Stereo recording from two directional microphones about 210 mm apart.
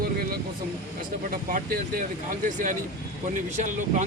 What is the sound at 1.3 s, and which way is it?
Speech, 40° right (ahead or behind).